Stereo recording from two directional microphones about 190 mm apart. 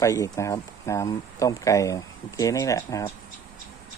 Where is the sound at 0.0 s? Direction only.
15° left (ahead or behind).